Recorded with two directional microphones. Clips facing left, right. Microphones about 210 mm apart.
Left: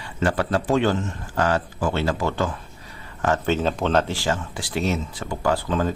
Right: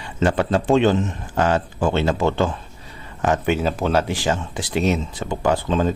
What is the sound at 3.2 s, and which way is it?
Speech, 15° right (ahead or behind).